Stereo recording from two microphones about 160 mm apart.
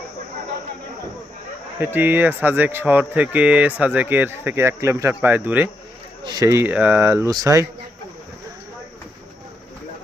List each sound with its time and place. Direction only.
1.8 s speech: 10° right (ahead or behind)
6.2 s speech: 20° right (ahead or behind)